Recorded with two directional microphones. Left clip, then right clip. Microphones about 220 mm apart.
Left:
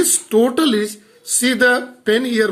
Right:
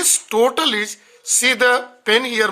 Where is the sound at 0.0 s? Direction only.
40° right (ahead or behind).